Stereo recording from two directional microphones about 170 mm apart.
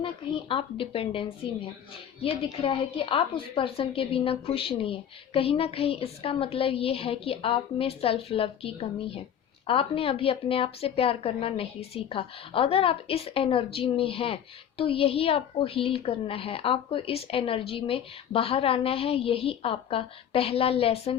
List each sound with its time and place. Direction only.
0.0 s a woman's voice: 30° left (ahead or behind)